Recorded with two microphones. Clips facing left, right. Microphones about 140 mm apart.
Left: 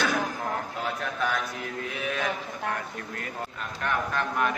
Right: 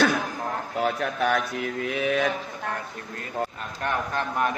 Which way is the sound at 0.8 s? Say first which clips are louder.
Right 9 dB; 65° right (ahead or behind).